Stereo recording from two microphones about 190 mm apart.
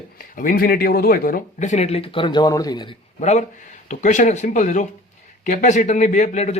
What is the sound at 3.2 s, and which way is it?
Speech, 40° left (ahead or behind).